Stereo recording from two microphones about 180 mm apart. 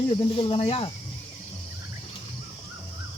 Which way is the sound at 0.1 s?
30° left (ahead or behind).